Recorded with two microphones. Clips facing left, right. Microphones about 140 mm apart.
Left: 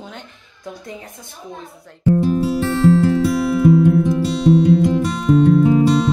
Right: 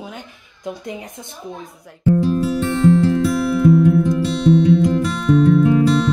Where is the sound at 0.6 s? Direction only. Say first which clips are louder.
Right 4 dB; 20° right (ahead or behind).